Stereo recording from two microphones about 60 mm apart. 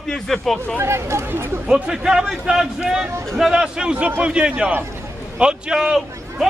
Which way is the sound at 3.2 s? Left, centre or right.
Centre.